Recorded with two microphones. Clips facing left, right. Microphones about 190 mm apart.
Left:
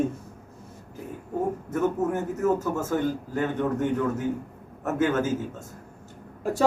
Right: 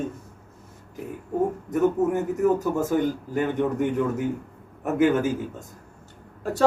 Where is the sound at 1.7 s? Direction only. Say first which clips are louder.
Right 4 dB; 15° right (ahead or behind).